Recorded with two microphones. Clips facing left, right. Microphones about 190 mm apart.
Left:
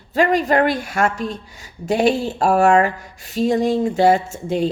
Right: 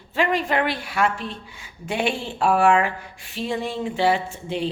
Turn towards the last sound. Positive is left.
turn(degrees=45)  # may be behind; listen again after turning